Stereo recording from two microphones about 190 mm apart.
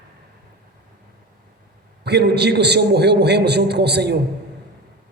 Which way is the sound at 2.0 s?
60° right (ahead or behind).